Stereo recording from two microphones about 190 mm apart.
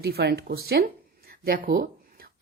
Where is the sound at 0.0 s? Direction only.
55° right (ahead or behind).